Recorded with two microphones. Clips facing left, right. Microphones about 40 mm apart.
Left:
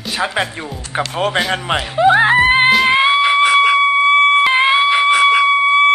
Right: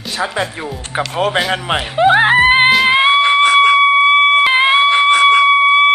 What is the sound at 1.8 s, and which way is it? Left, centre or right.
Speech, right.